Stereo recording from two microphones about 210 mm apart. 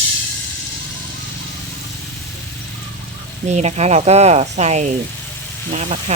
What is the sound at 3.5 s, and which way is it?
Speech, 30° right (ahead or behind).